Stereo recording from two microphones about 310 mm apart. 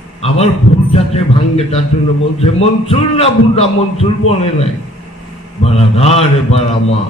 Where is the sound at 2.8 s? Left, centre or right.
Centre.